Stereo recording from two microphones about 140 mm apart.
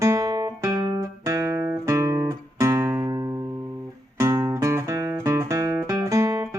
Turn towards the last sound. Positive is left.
turn(degrees=-20)  # may be behind; listen again after turning